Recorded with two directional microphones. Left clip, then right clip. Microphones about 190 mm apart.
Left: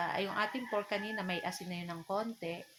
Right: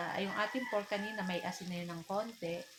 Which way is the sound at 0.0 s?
40° left (ahead or behind).